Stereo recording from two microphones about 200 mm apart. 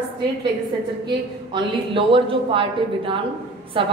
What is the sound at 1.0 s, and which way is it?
A woman's voice, 25° right (ahead or behind).